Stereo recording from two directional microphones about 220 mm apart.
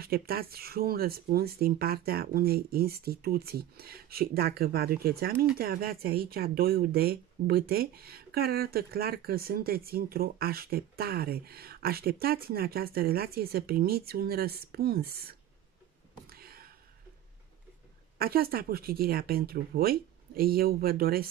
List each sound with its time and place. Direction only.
0.0 s speech: 45° right (ahead or behind)
16.3 s whispering: 45° right (ahead or behind)
18.1 s speech: 45° right (ahead or behind)